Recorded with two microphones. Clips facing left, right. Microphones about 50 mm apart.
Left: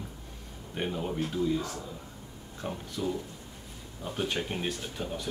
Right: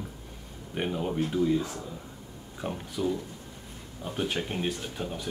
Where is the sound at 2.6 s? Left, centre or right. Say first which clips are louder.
Right 3 dB; centre.